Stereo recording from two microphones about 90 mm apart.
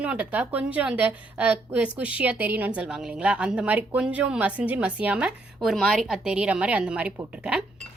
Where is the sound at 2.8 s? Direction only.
5° right (ahead or behind).